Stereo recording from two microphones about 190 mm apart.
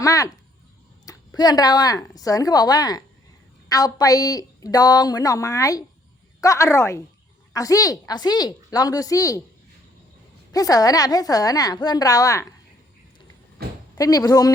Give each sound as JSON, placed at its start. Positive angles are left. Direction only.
{"t": 0.0, "sound": "a woman's voice", "side_deg": 15}
{"t": 10.5, "sound": "a woman's voice", "side_deg": 20}
{"t": 13.6, "sound": "a sound", "side_deg": -55}
{"t": 14.0, "sound": "a woman's voice", "side_deg": 20}